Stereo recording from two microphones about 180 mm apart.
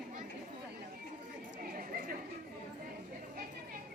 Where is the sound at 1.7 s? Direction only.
50° right (ahead or behind).